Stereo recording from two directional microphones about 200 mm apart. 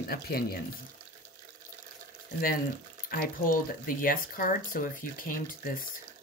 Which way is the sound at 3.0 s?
45° left (ahead or behind).